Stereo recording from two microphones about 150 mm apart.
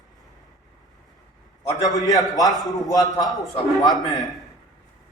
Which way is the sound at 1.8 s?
25° left (ahead or behind).